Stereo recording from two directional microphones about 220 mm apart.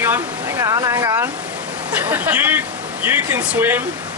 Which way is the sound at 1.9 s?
5° right (ahead or behind).